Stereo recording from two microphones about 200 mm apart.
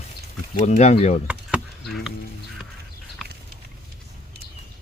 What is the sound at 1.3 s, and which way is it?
Chop, 5° right (ahead or behind).